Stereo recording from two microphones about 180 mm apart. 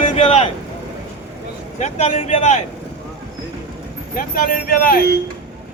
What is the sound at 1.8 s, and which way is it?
Speech, 35° left (ahead or behind).